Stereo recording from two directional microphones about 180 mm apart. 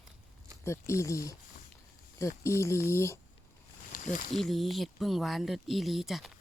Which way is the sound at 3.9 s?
45° left (ahead or behind).